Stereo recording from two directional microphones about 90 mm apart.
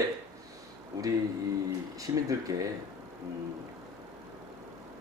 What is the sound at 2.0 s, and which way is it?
Speech, 40° right (ahead or behind).